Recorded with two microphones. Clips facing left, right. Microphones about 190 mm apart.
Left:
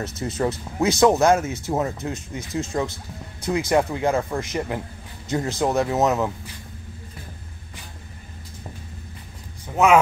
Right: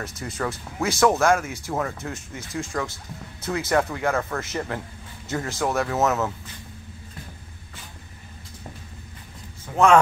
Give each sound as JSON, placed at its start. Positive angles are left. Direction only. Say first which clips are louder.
{"t": 0.0, "sound": "speech", "louder": "left 5 dB", "side_deg": 20}